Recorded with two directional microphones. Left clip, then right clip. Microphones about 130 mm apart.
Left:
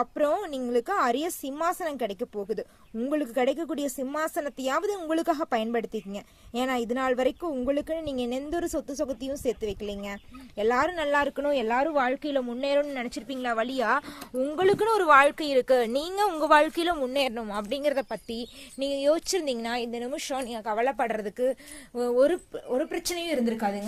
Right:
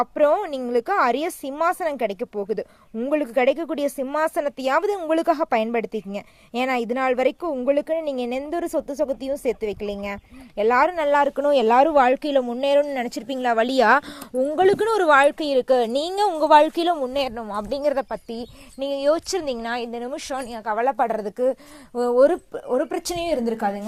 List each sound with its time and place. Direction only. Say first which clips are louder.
0.0 s speech: right 7 dB; 30° right (ahead or behind)
11.4 s a woman's voice: right 9 dB; 60° right (ahead or behind)
12.4 s a woman's voice: right 5 dB; 45° right (ahead or behind); by 14.0 s 60° right (ahead or behind)
14.3 s speech: right 6 dB; 30° right (ahead or behind)
16.4 s speech: right 6 dB; 20° right (ahead or behind); by 17.5 s centre (ahead or behind)
17.6 s speech: right 5 dB; 20° right (ahead or behind)